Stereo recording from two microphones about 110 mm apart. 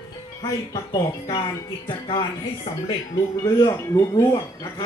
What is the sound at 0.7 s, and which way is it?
Speech, 35° left (ahead or behind).